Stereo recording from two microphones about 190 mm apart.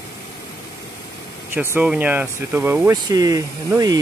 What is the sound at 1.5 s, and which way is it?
Speech, 10° right (ahead or behind).